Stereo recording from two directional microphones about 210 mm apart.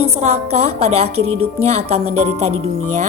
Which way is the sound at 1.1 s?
90° right.